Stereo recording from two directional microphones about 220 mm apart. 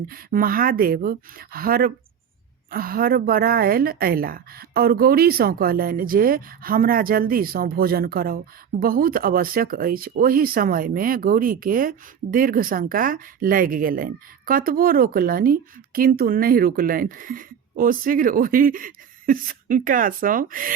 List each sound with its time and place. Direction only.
0.1 s speech: 40° right (ahead or behind)